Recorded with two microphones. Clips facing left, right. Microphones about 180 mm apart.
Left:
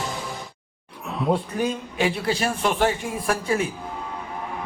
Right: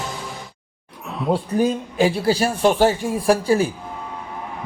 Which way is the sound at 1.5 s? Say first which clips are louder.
Right 6 dB; 40° right (ahead or behind).